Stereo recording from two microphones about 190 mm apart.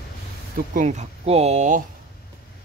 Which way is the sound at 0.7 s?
40° right (ahead or behind).